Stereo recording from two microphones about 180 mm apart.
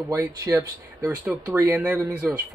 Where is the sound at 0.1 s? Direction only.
10° right (ahead or behind).